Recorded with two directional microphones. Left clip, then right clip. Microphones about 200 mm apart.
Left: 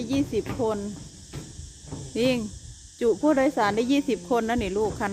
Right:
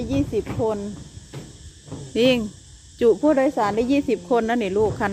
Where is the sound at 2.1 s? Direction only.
15° right (ahead or behind).